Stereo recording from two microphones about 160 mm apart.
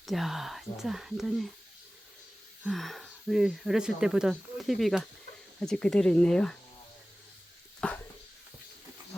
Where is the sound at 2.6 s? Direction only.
Centre (ahead or behind).